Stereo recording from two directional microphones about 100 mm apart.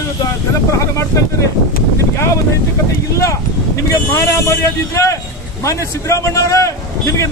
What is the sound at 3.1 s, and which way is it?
Speech, 30° left (ahead or behind).